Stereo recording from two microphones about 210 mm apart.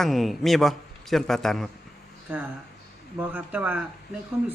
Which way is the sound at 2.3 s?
10° right (ahead or behind).